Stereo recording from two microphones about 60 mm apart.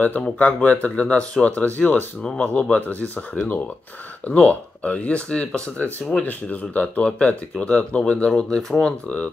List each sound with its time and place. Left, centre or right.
0.0 s speech: left